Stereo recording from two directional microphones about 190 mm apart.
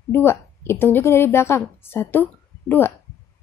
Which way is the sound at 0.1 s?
15° left (ahead or behind).